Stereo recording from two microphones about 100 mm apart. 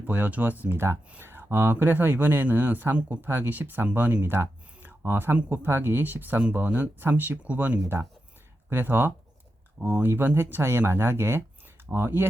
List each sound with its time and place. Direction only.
0.0 s speech: 15° right (ahead or behind)